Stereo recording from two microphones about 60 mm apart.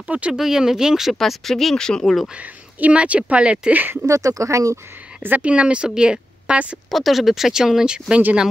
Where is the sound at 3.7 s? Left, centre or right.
Right.